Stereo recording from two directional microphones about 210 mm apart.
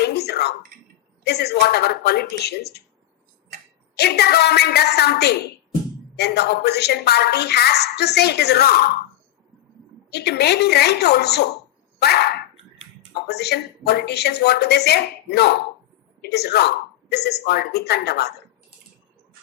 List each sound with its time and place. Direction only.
0.0 s a sound: 50° left (ahead or behind)
1.2 s a woman's voice: 50° left (ahead or behind)
3.9 s a woman's voice: 50° left (ahead or behind)
10.1 s a woman's voice: 50° left (ahead or behind)
11.9 s dog: 50° left (ahead or behind)
13.2 s a woman's voice: 50° left (ahead or behind)